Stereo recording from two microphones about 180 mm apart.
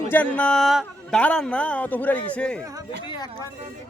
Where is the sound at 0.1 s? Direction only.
10° left (ahead or behind).